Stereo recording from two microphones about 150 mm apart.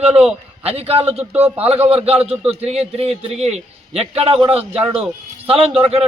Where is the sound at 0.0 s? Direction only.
45° right (ahead or behind).